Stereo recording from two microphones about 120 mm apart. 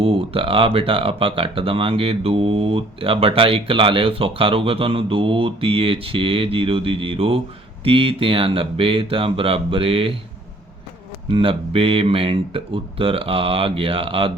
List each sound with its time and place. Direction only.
0.0 s speech: 50° right (ahead or behind)
11.3 s speech: 50° right (ahead or behind)